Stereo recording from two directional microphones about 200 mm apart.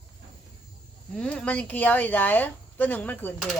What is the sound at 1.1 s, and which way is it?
Speech, 5° left (ahead or behind).